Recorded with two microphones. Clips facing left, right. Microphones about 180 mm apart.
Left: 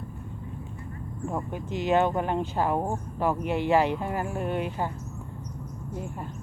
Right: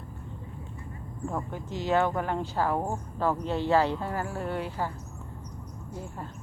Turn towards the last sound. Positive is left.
turn(degrees=20)  # may be behind; listen again after turning